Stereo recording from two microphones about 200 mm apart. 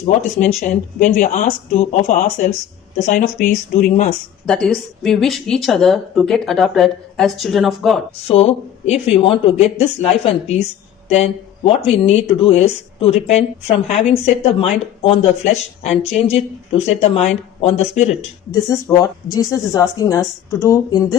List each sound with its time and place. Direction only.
0.0 s speech: 35° left (ahead or behind)
4.4 s a woman's voice: 5° left (ahead or behind)
8.3 s speech: 30° left (ahead or behind)
18.7 s speech: 15° left (ahead or behind)